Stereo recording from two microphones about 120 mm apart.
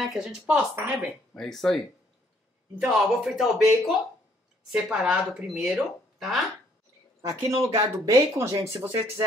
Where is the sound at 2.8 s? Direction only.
Centre (ahead or behind).